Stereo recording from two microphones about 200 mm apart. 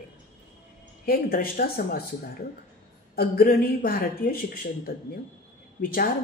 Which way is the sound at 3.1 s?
50° left (ahead or behind).